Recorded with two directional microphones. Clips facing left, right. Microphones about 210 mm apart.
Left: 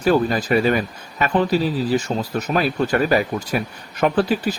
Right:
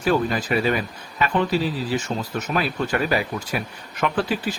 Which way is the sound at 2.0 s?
35° left (ahead or behind).